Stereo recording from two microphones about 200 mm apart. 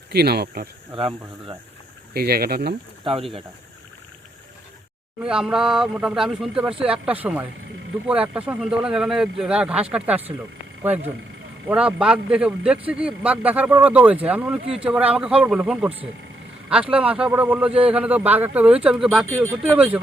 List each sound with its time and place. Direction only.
0.1 s speech: 55° right (ahead or behind)
0.9 s speech: 25° right (ahead or behind)
2.1 s speech: 50° right (ahead or behind)
3.0 s speech: 25° right (ahead or behind)
5.2 s a man's voice: 5° right (ahead or behind)